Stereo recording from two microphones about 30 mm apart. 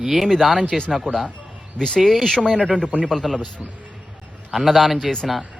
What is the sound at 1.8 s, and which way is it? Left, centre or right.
Speech, centre.